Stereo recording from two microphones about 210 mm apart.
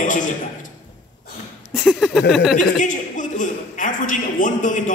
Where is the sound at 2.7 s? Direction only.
35° left (ahead or behind).